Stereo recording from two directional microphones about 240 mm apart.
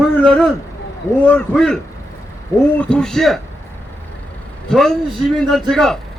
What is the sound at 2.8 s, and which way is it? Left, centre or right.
Speech, centre.